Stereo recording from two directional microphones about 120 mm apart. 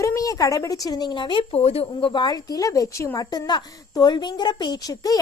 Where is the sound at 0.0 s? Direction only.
25° left (ahead or behind).